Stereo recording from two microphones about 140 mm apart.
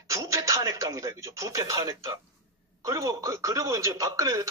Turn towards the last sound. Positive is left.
turn(degrees=-25)  # may be behind; listen again after turning